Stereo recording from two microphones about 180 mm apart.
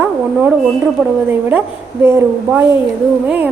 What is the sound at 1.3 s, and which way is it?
A woman's voice, 10° right (ahead or behind).